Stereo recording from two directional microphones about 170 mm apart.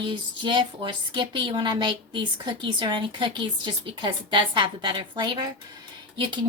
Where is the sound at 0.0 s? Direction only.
25° right (ahead or behind).